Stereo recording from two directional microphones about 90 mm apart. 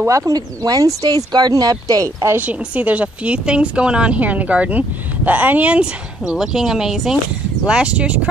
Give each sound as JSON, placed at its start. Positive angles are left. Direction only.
{"t": 0.0, "sound": "speech", "side_deg": -35}
{"t": 2.3, "sound": "speech", "side_deg": -15}